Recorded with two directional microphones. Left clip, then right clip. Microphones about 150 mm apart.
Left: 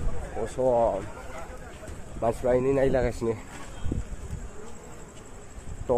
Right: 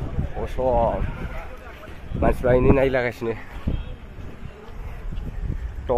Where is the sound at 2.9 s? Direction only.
15° left (ahead or behind).